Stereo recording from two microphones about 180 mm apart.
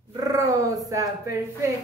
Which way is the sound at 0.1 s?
20° right (ahead or behind).